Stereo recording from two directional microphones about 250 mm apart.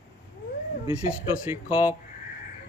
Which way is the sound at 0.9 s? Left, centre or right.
Centre.